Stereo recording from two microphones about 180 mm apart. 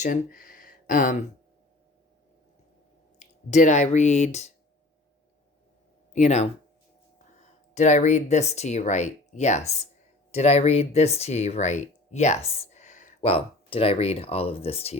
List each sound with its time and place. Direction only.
0.0 s speech: 50° left (ahead or behind)
3.2 s speech: 40° left (ahead or behind)
6.1 s speech: 40° left (ahead or behind)
7.7 s speech: 40° left (ahead or behind)
13.3 s speech: 30° left (ahead or behind)